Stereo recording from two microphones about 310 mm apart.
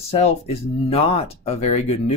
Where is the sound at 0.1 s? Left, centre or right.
Centre.